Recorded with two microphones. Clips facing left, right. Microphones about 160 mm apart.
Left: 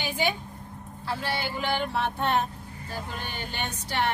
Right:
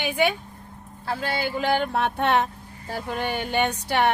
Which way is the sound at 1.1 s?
45° right (ahead or behind).